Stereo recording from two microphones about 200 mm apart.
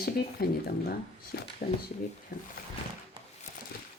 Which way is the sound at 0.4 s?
50° left (ahead or behind).